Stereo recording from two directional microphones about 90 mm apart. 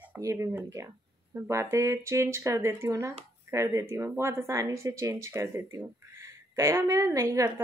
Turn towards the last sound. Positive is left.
turn(degrees=-35)  # may be behind; listen again after turning